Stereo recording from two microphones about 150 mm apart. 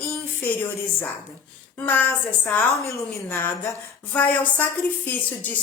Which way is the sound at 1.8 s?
10° left (ahead or behind).